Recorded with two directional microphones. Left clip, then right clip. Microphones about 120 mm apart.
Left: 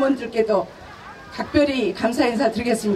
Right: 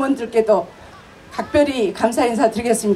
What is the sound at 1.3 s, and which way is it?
A woman's voice, 25° right (ahead or behind).